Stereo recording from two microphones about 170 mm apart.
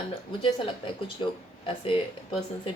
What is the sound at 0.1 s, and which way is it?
Speech, 30° left (ahead or behind).